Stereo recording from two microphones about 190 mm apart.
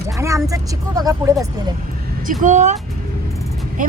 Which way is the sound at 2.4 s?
40° right (ahead or behind).